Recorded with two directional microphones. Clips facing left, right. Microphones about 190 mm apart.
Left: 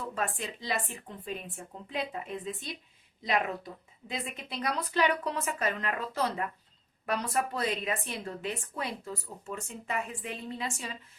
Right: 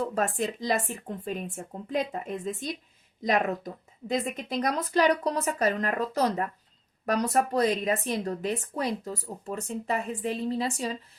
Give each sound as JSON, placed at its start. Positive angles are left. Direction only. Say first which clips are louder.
{"t": 0.0, "sound": "speech", "louder": "right 7 dB", "side_deg": -40}